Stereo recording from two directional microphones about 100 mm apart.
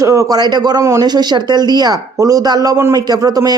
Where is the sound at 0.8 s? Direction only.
30° right (ahead or behind).